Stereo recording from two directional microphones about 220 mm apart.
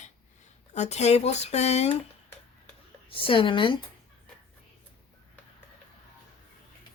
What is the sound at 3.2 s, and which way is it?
Speech, 25° left (ahead or behind).